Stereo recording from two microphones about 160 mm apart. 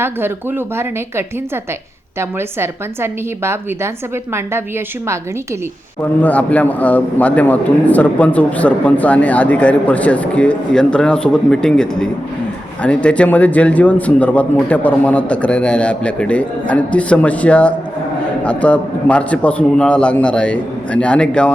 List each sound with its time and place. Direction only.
0.0 s a woman's voice: 15° right (ahead or behind)
6.0 s a man's voice: 10° left (ahead or behind)